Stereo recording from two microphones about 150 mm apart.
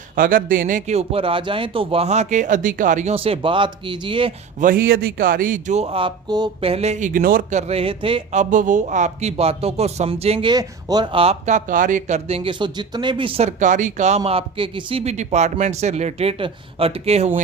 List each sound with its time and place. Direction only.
0.2 s a man's voice: 65° right (ahead or behind); by 4.3 s 35° right (ahead or behind)
4.6 s speech: 80° right; by 6.7 s 30° right (ahead or behind)
6.7 s speech: 45° right (ahead or behind); by 7.4 s 70° right (ahead or behind)
7.5 s speech: 40° right (ahead or behind)
8.3 s a man's voice: 55° right (ahead or behind); by 10.5 s 40° right (ahead or behind)
10.5 s speech: 25° right (ahead or behind)
13.6 s speech: 55° right (ahead or behind)
14.3 s a man's voice: 40° right (ahead or behind)